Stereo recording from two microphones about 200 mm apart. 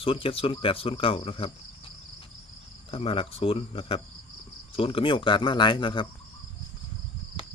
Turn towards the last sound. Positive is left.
turn(degrees=25)  # may be behind; listen again after turning